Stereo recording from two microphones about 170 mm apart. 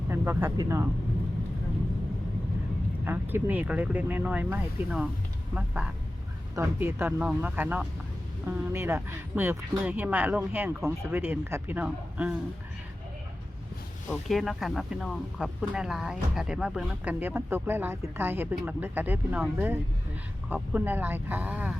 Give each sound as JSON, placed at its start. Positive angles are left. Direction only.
{"t": 0.1, "sound": "a sound", "side_deg": -15}
{"t": 0.5, "sound": "speech", "side_deg": -20}
{"t": 3.0, "sound": "speech", "side_deg": -10}
{"t": 14.3, "sound": "speech", "side_deg": 0}